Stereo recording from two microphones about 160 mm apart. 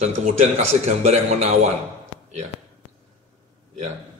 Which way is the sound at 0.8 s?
40° right (ahead or behind).